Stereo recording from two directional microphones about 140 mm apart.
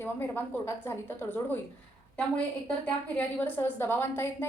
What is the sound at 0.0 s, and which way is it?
A woman's voice, 15° left (ahead or behind).